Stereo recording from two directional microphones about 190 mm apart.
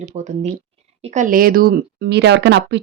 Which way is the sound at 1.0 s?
40° right (ahead or behind).